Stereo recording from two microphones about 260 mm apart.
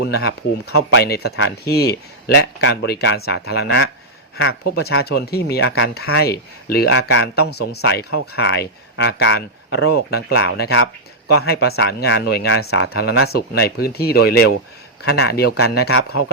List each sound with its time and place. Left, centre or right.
0.1 s speech: left